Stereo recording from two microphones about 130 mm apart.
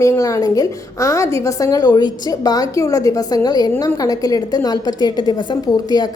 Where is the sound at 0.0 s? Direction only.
25° left (ahead or behind).